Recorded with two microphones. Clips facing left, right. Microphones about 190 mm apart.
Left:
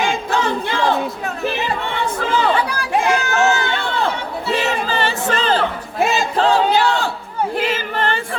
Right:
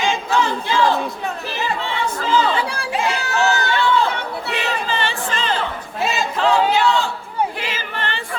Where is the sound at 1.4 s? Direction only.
55° left (ahead or behind).